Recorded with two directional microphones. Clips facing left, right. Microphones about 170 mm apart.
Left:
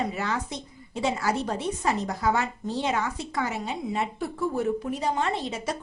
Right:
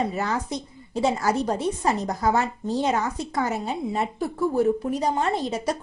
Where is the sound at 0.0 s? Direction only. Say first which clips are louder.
Right 3 dB; 40° right (ahead or behind).